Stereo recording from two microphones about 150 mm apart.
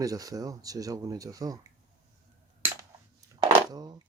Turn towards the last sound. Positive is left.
turn(degrees=-30)  # may be behind; listen again after turning